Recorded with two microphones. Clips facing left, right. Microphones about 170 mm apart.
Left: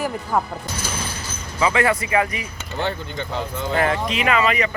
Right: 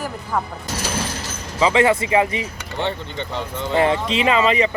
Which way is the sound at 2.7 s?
Centre (ahead or behind).